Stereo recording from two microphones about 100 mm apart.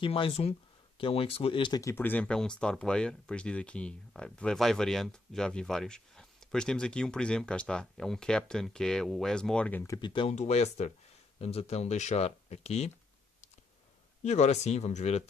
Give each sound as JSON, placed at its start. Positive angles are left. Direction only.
{"t": 0.0, "sound": "speech", "side_deg": 65}
{"t": 2.0, "sound": "speech", "side_deg": 15}
{"t": 9.9, "sound": "speech", "side_deg": 50}
{"t": 10.2, "sound": "speech", "side_deg": 90}
{"t": 14.2, "sound": "speech", "side_deg": 90}